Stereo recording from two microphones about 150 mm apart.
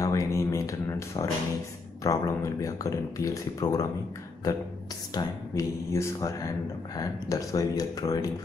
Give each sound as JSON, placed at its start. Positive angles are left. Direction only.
{"t": 0.0, "sound": "a sound", "side_deg": 20}
{"t": 2.0, "sound": "speech", "side_deg": 20}
{"t": 5.1, "sound": "speech", "side_deg": 20}